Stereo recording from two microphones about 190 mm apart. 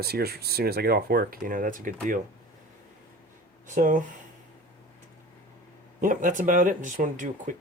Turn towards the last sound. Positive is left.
turn(degrees=-40)  # may be behind; listen again after turning